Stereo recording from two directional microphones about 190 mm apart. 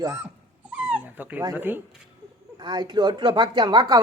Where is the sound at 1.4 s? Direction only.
15° right (ahead or behind).